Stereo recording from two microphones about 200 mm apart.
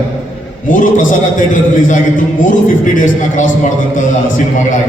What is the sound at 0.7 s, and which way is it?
A man's voice, 40° left (ahead or behind).